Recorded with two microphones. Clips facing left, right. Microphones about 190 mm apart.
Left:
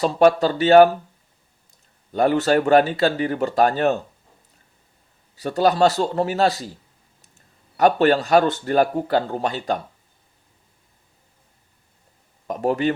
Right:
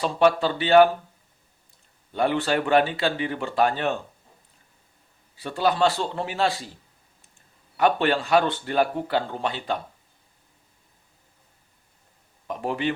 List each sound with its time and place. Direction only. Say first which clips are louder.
0.0 s speech: left 4 dB; 40° left (ahead or behind)
2.1 s speech: left 5 dB; 40° left (ahead or behind)
5.4 s speech: left 5 dB; 40° left (ahead or behind)
12.5 s speech: left 6 dB; 40° left (ahead or behind)